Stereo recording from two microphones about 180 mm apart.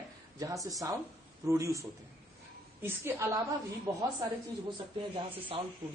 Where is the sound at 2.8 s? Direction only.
15° right (ahead or behind).